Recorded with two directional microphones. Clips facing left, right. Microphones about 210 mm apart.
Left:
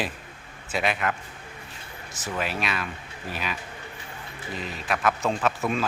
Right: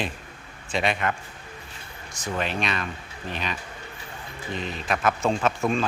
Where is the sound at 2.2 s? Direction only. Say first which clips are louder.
Right 2 dB; 5° left (ahead or behind).